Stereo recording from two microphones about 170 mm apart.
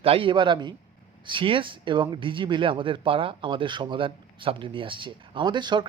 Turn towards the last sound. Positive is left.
turn(degrees=-25)  # may be behind; listen again after turning